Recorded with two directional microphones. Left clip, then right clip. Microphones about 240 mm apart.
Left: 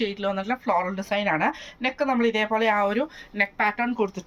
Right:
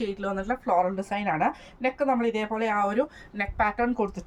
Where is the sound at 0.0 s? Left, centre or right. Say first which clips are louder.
Left 4 dB; centre.